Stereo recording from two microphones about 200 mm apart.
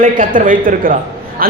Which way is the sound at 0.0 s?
40° right (ahead or behind).